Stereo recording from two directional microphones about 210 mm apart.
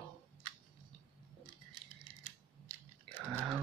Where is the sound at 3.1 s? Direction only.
5° right (ahead or behind).